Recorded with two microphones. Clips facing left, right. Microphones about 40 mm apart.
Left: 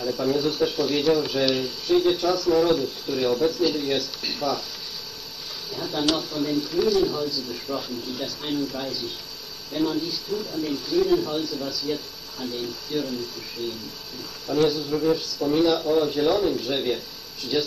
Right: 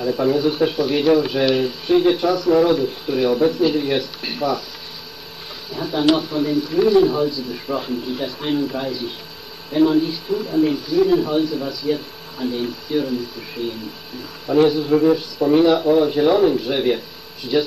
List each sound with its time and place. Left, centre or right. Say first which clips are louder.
0.0 s speech: right 6 dB; right
5.7 s speech: right 7 dB; centre
10.9 s speech: right 5 dB; centre